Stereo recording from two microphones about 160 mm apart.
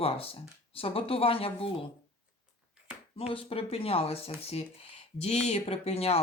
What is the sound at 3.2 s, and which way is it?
Speech, 35° left (ahead or behind).